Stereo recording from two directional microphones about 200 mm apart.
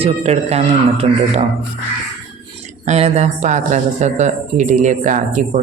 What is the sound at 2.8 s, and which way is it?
Speech, 35° right (ahead or behind).